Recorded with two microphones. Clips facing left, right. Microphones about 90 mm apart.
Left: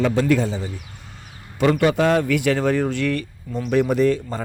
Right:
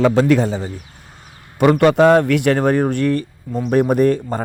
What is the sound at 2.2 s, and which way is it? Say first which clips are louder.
A man's voice: right 4 dB; 60° right (ahead or behind).